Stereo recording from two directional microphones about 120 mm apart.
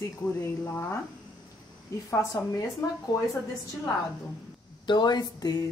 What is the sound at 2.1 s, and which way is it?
Speech, 25° left (ahead or behind).